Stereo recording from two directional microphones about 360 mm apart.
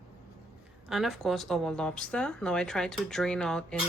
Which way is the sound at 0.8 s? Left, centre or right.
Centre.